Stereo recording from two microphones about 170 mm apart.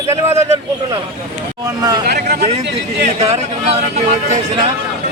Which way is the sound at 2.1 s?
70° right (ahead or behind).